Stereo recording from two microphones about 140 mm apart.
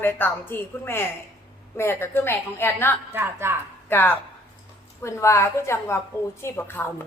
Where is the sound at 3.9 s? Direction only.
15° left (ahead or behind).